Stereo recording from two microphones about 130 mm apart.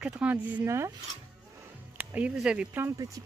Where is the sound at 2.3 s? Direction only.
10° right (ahead or behind).